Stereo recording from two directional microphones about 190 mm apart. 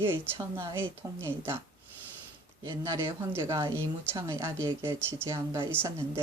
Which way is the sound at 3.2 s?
20° right (ahead or behind).